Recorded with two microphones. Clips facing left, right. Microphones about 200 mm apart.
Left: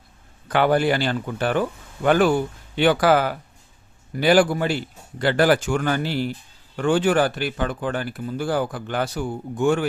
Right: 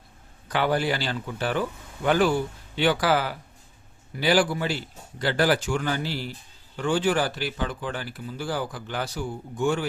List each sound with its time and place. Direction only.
0.4 s speech: 55° left (ahead or behind)